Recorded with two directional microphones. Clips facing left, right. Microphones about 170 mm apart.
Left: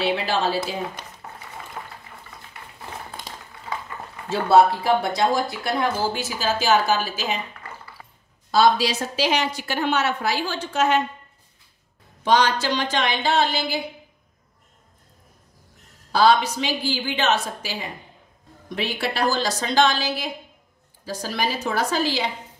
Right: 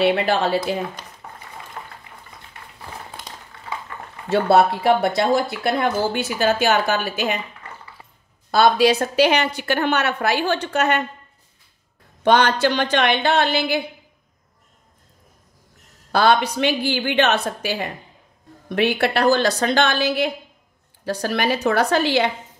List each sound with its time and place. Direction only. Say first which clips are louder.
0.0 s speech: right 4 dB; 60° right (ahead or behind)
1.2 s boiling: right 1 dB; 5° left (ahead or behind)
4.3 s speech: right 1 dB; 65° right (ahead or behind)
8.5 s speech: right 3 dB; 60° right (ahead or behind)
12.2 s speech: right 3 dB; 60° right (ahead or behind)
16.1 s speech: right 1 dB; 60° right (ahead or behind)